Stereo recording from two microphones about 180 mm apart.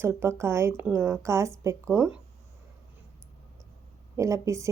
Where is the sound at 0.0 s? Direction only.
15° right (ahead or behind).